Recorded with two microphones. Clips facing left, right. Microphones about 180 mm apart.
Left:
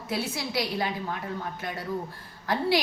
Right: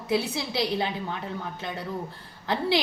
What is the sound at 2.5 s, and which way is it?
Speech, 25° right (ahead or behind).